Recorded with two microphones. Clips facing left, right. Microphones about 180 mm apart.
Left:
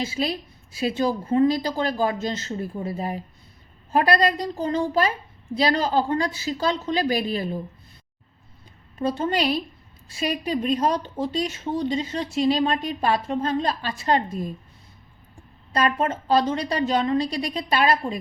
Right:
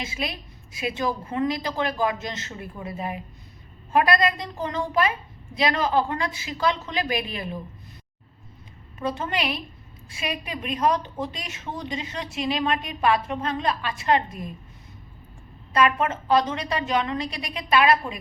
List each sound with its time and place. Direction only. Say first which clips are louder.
0.0 s a woman's voice: left 6 dB; 35° left (ahead or behind)
9.0 s a woman's voice: left 4 dB; 35° left (ahead or behind)
15.7 s a woman's voice: right 1 dB; 35° left (ahead or behind)